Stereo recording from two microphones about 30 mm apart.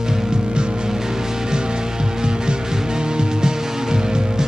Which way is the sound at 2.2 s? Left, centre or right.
Right.